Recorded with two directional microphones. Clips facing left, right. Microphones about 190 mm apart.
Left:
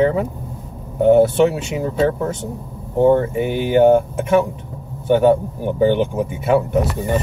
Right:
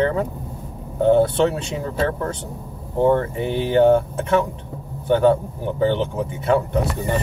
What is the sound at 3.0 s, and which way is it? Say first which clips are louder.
Speech: left 4 dB; 20° left (ahead or behind).